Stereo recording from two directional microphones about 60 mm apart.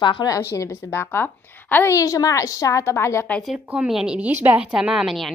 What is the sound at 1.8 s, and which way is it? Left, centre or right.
Speech, left.